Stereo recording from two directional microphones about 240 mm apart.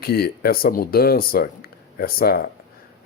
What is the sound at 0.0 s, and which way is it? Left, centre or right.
Speech, left.